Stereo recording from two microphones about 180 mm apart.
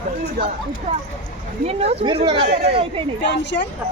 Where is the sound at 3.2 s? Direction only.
75° left (ahead or behind).